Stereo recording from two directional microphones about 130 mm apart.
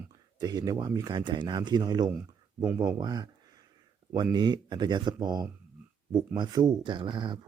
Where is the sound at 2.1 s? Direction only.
10° right (ahead or behind).